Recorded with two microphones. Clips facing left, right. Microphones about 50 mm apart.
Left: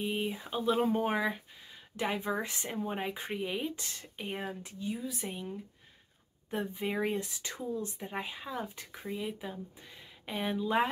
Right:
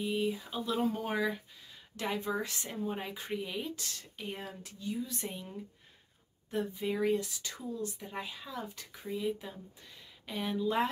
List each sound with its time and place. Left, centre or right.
0.0 s speech: left
5.1 s speech: centre
6.5 s speech: left
9.0 s speech: centre